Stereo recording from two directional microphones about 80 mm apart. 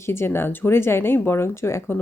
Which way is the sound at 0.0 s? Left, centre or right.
Left.